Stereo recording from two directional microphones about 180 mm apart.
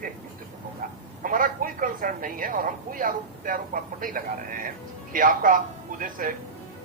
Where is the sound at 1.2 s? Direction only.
50° right (ahead or behind).